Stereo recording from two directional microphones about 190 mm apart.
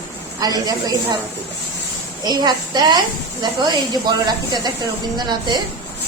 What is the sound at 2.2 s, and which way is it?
Speech, 20° right (ahead or behind).